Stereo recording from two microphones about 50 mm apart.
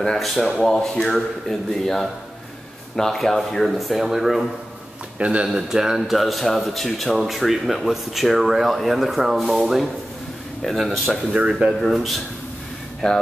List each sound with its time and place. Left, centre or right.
0.0 s speech: centre
5.2 s speech: right
5.5 s speech: centre
11.3 s speech: right
11.8 s speech: centre
13.0 s speech: centre